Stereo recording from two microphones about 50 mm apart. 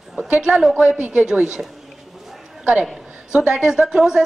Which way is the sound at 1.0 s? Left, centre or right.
Right.